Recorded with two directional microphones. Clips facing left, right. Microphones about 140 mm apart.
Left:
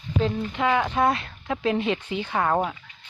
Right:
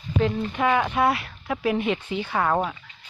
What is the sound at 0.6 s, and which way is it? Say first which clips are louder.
Speech: right 1 dB; 20° right (ahead or behind).